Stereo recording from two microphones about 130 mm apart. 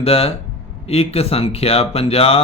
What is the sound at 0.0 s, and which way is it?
Speech, 50° left (ahead or behind).